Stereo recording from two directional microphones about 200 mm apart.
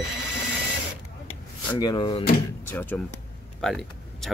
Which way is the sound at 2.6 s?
10° left (ahead or behind).